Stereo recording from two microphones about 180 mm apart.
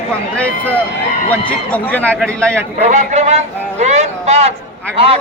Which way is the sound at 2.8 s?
40° right (ahead or behind).